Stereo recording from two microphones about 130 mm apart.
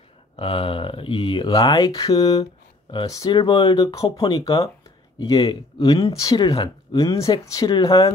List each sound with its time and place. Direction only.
0.4 s speech: 45° left (ahead or behind)